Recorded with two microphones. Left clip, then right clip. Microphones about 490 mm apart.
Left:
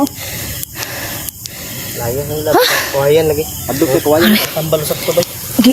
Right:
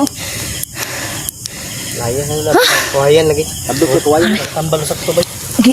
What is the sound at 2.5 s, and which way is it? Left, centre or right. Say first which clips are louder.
Speech: right 1 dB; left.